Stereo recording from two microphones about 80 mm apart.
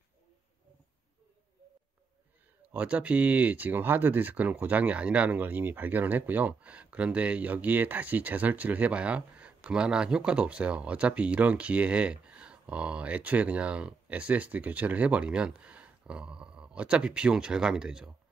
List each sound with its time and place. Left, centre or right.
2.7 s speech: centre